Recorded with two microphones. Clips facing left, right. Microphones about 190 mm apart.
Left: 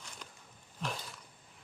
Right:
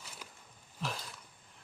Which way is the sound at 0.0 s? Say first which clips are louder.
Even; 5° right (ahead or behind).